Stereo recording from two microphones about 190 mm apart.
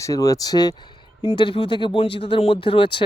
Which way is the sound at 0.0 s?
20° left (ahead or behind).